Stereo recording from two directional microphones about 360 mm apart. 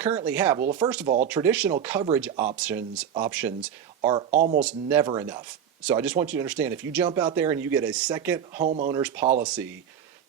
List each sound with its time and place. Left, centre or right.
0.0 s speech: centre
1.0 s speech: right
1.3 s speech: centre; by 4.6 s right
4.6 s speech: centre
8.6 s speech: right
8.9 s speech: centre
9.2 s speech: centre